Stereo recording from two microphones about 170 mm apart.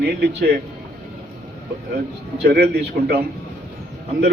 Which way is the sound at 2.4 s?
70° right (ahead or behind).